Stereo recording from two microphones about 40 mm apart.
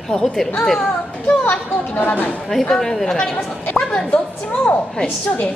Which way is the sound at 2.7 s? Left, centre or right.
Centre.